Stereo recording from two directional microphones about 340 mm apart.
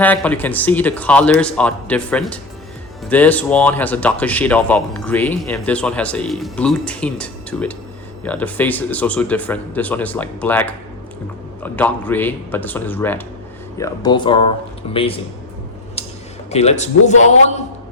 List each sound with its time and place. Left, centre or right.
0.0 s speech: centre
16.5 s a man's voice: centre